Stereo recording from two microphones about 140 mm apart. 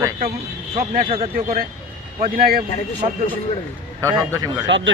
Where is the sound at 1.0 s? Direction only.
40° right (ahead or behind).